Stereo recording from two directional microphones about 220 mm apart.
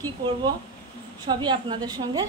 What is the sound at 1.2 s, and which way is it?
A woman's voice, 20° right (ahead or behind).